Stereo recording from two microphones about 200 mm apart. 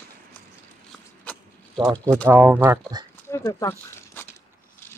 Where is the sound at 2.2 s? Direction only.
10° right (ahead or behind).